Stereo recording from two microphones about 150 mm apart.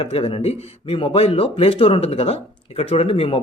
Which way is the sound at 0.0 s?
40° left (ahead or behind).